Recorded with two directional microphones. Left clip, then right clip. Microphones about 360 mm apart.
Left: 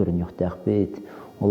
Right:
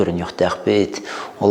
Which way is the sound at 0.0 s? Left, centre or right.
Centre.